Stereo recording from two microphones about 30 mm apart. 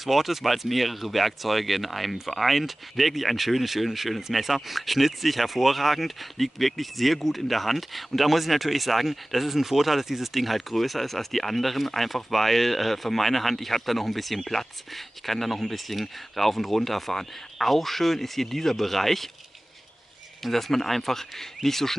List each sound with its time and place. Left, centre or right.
0.0 s speech: centre
20.4 s speech: centre